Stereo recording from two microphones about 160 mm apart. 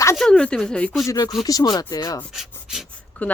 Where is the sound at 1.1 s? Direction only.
25° left (ahead or behind).